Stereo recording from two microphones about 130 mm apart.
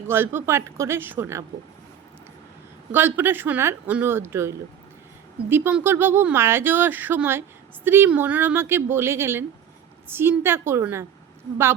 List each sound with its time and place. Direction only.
0.1 s speech: 20° right (ahead or behind)
2.9 s speech: 15° right (ahead or behind)